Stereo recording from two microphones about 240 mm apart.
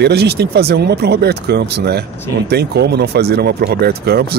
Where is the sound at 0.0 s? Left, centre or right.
Right.